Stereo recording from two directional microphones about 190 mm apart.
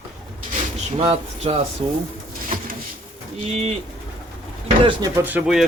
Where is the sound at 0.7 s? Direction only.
35° right (ahead or behind).